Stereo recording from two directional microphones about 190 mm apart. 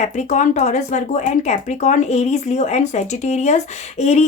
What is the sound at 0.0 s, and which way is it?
Speech, 40° left (ahead or behind).